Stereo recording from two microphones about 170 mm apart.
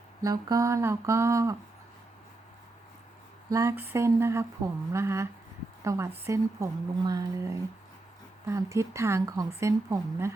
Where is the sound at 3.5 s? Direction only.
20° right (ahead or behind).